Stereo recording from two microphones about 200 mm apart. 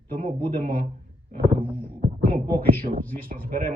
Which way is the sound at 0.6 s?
50° right (ahead or behind).